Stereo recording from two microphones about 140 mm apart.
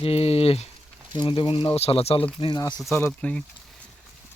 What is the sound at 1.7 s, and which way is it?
Speech, 45° left (ahead or behind).